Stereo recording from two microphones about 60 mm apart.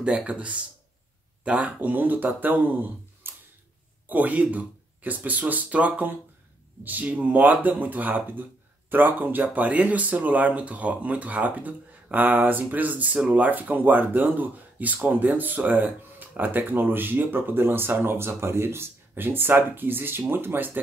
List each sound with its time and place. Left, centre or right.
0.0 s speech: centre; by 20.8 s right